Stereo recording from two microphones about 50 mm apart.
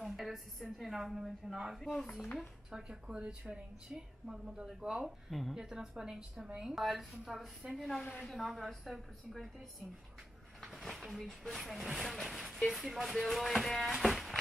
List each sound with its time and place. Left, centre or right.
0.0 s speech: centre
1.8 s speech: centre
2.7 s a woman's voice: centre
6.7 s speech: centre
8.0 s a woman's voice: left
8.3 s speech: centre
10.6 s speech: centre